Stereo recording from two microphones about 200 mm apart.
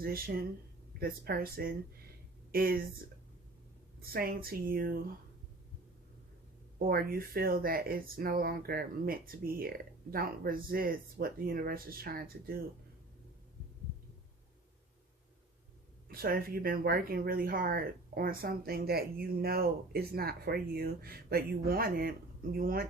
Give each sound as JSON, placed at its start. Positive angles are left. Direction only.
{"t": 0.0, "sound": "speech", "side_deg": -50}
{"t": 4.0, "sound": "speech", "side_deg": -50}
{"t": 6.7, "sound": "speech", "side_deg": -45}
{"t": 16.1, "sound": "speech", "side_deg": -50}